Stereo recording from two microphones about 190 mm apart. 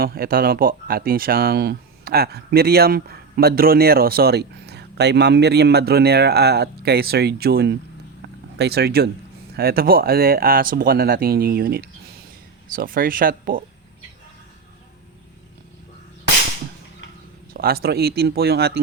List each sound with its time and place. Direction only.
0.0 s speech: 50° right (ahead or behind)
8.2 s a sound: 60° right (ahead or behind)
9.6 s speech: 55° right (ahead or behind)
17.5 s speech: 55° right (ahead or behind)